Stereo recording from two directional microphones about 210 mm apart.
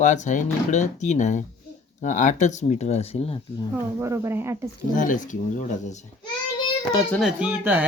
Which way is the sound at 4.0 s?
15° right (ahead or behind).